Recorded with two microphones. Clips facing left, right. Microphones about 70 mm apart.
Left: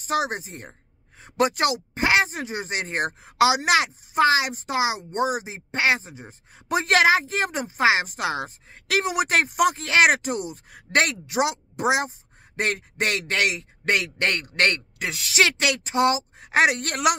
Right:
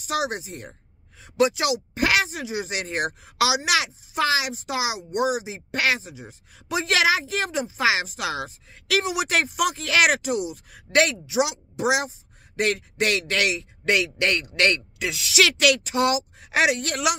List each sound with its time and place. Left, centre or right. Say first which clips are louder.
0.0 s speech: left 1 dB; left
1.2 s a woman's voice: even; left
2.0 s speech: left 2 dB; left
2.2 s speech: right 1 dB; left